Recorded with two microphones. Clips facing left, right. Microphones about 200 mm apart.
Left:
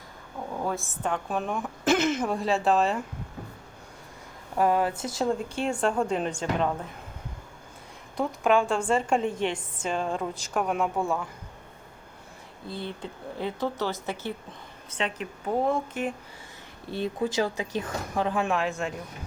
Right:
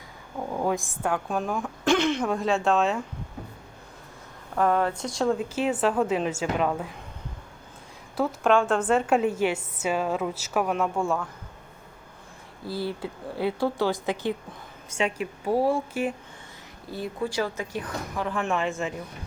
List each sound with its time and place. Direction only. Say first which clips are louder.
0.7 s a woman's voice: right 2 dB; 10° right (ahead or behind)
4.5 s a woman's voice: even; 10° left (ahead or behind)
8.1 s a woman's voice: right 1 dB; centre (ahead or behind)
12.6 s speech: right 5 dB; 5° right (ahead or behind)
16.9 s speech: left 2 dB; 20° left (ahead or behind)
18.5 s a woman's voice: right 1 dB; centre (ahead or behind)